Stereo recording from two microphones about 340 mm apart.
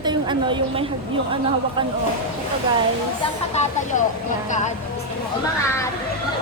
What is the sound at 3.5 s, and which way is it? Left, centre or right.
Speech, centre.